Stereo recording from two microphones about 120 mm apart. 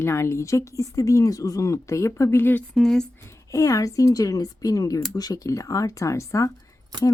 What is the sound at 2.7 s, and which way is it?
Speech, 5° left (ahead or behind).